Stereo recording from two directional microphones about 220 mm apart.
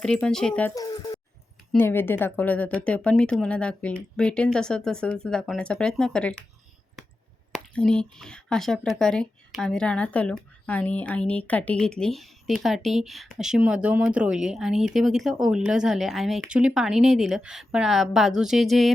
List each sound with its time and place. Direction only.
0.0 s speech: 5° left (ahead or behind)
0.8 s speech: 15° left (ahead or behind)
7.5 s speech: 5° left (ahead or behind)